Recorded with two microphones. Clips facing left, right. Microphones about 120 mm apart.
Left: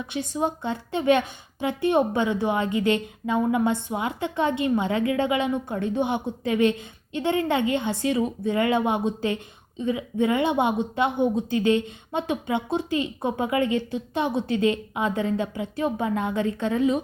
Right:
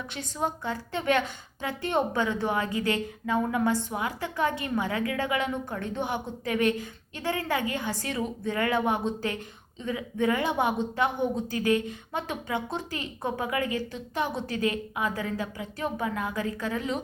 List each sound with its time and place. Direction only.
0.1 s a woman's voice: 20° left (ahead or behind)